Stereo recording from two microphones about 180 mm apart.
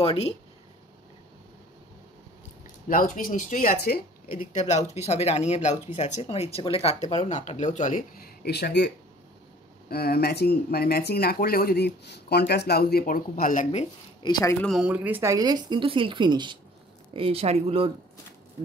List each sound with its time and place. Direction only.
0.0 s speech: 30° left (ahead or behind)
2.9 s speech: 50° left (ahead or behind)
13.7 s speech: 30° left (ahead or behind)
14.6 s a woman's voice: centre (ahead or behind); by 17.9 s 30° right (ahead or behind)